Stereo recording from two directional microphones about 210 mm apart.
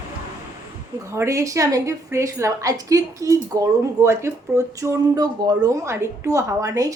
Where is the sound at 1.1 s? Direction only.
15° right (ahead or behind).